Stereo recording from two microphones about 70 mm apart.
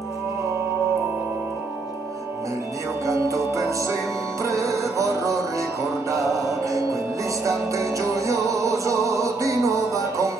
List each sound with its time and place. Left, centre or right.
3.1 s music: right